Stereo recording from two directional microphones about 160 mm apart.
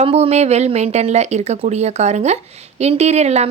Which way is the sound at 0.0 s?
40° right (ahead or behind).